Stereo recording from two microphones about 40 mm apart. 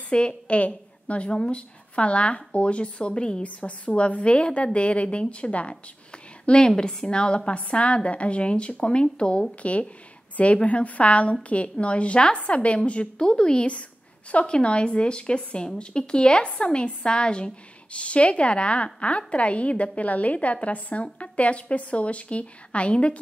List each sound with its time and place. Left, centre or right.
0.3 s a woman's voice: left
3.4 s a woman's voice: left